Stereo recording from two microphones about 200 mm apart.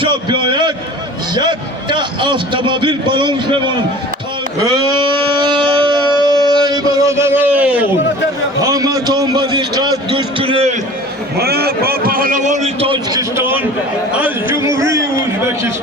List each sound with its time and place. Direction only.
0.0 s a sound: 25° right (ahead or behind)
1.4 s a man's voice: 20° right (ahead or behind)
4.6 s a sound: 20° right (ahead or behind)
8.6 s a man's voice: 15° right (ahead or behind)
11.3 s a man's voice: 50° right (ahead or behind); by 13.2 s 25° right (ahead or behind)
13.3 s a man's voice: 10° right (ahead or behind)